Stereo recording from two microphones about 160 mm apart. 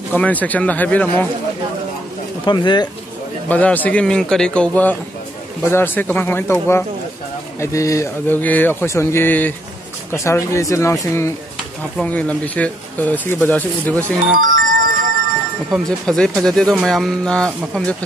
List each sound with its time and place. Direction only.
0.1 s speech: 10° left (ahead or behind)
2.4 s speech: 25° left (ahead or behind)
3.4 s speech: 10° left (ahead or behind)
14.4 s music: 60° right (ahead or behind)
15.7 s speech: 5° left (ahead or behind)